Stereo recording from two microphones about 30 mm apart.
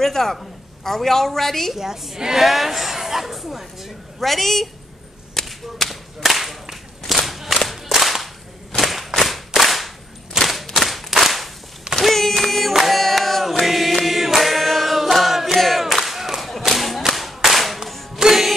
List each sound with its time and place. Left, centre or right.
0.0 s a woman's voice: centre
1.8 s a woman's voice: centre
2.4 s speech: centre
4.2 s speech: centre
5.3 s whip: centre
5.9 s clapping: centre
7.2 s a sound: centre
9.2 s clapping: centre
10.4 s a sound: centre
11.9 s singing: centre
15.5 s crowd: centre
16.3 s whip: centre
18.1 s music: centre